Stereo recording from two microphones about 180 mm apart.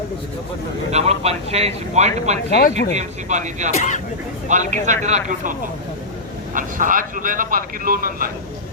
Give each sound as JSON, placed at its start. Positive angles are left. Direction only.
{"t": 0.9, "sound": "speech", "side_deg": -35}
{"t": 2.5, "sound": "speech", "side_deg": 55}
{"t": 2.9, "sound": "speech", "side_deg": -40}
{"t": 3.7, "sound": "speech", "side_deg": 40}
{"t": 4.4, "sound": "speech", "side_deg": -40}